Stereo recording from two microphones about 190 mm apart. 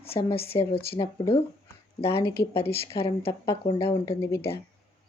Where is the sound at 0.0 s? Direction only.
30° left (ahead or behind).